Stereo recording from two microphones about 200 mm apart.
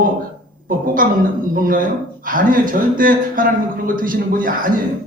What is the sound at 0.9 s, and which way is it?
A woman's voice, 45° right (ahead or behind).